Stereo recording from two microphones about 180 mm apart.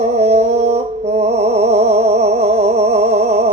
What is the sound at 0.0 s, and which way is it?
Music, 35° right (ahead or behind).